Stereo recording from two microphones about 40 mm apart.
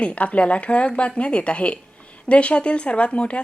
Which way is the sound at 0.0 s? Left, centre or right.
Left.